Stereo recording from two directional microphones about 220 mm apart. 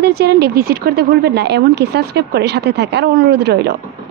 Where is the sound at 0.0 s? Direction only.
45° right (ahead or behind).